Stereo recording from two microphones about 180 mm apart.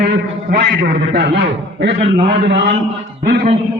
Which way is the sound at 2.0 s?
35° right (ahead or behind).